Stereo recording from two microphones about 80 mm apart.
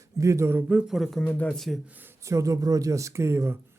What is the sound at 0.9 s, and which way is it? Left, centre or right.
Speech, centre.